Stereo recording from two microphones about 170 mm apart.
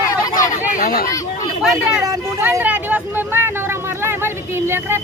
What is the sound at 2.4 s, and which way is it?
Vehicle, 10° right (ahead or behind).